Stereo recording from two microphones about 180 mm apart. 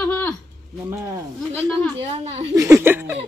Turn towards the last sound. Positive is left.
turn(degrees=-10)  # may be behind; listen again after turning